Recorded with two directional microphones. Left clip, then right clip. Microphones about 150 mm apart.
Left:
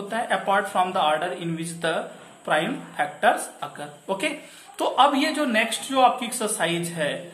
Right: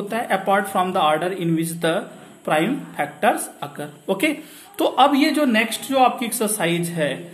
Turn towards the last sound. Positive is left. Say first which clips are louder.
# right 4 dB
turn(degrees=-40)  # may be behind; listen again after turning